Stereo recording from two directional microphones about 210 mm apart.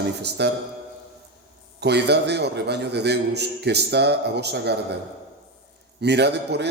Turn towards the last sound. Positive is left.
turn(degrees=-50)  # may be behind; listen again after turning